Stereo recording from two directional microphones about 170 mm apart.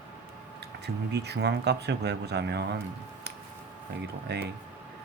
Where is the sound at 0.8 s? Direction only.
75° right (ahead or behind).